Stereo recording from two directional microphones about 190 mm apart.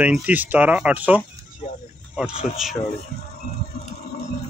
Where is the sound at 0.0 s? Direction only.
10° right (ahead or behind).